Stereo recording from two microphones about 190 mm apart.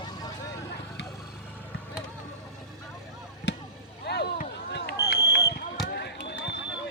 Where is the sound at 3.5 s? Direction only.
70° left (ahead or behind).